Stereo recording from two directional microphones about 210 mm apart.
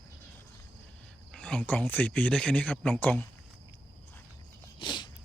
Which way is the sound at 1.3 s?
5° left (ahead or behind).